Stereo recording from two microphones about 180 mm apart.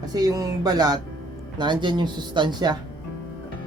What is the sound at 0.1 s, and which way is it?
Speech, 20° right (ahead or behind).